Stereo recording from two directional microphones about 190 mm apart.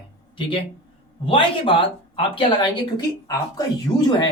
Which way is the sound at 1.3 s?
25° left (ahead or behind).